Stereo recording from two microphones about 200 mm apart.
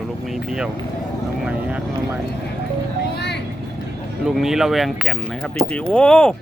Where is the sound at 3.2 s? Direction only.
55° left (ahead or behind).